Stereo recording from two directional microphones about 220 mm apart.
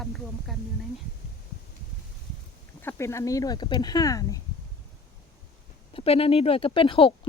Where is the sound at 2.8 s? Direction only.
10° left (ahead or behind).